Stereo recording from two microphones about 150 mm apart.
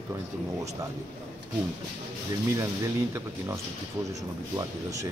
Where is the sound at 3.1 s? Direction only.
20° right (ahead or behind).